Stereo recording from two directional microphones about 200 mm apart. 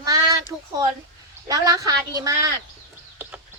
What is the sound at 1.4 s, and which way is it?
A child's voice, 15° right (ahead or behind).